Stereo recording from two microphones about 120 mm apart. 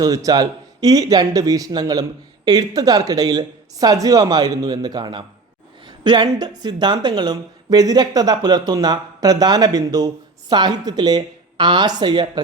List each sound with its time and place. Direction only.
0.3 s speech: 30° right (ahead or behind)
5.8 s a sound: 40° right (ahead or behind)
6.3 s speech: 35° right (ahead or behind)